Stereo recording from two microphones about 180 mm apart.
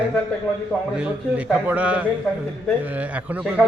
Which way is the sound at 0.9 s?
5° right (ahead or behind).